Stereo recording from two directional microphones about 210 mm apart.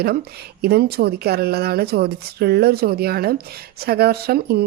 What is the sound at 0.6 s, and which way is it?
Speech, 50° right (ahead or behind).